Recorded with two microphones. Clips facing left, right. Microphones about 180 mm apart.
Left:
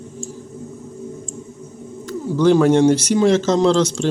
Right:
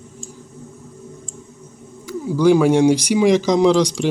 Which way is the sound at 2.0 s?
10° right (ahead or behind).